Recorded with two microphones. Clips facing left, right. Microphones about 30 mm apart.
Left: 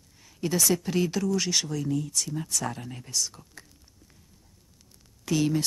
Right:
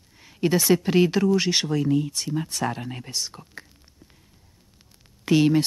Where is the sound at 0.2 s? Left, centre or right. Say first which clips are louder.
Right 5 dB; right.